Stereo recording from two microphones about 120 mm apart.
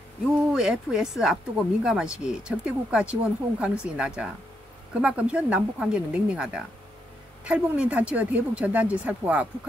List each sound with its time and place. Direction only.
0.5 s speech: 5° right (ahead or behind)